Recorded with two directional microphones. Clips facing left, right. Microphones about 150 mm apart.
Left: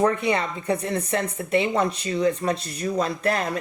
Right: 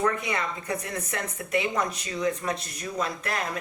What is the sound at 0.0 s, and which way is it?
A woman's voice, 30° left (ahead or behind).